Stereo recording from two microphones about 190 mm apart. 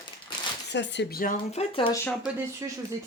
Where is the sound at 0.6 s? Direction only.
65° left (ahead or behind).